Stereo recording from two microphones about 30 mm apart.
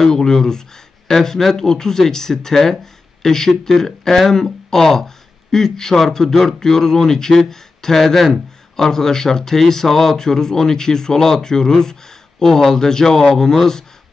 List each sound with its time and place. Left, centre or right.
0.0 s speech: centre